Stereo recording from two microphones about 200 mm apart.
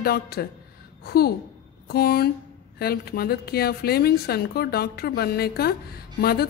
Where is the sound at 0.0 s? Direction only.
50° left (ahead or behind).